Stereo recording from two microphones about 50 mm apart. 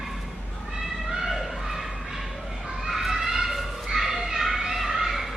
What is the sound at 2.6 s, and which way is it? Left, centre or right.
Children playing, centre.